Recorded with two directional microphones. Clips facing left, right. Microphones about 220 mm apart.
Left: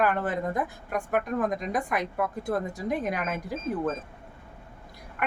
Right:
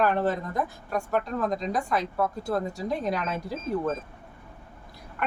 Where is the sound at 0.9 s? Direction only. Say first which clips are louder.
Even; 20° left (ahead or behind).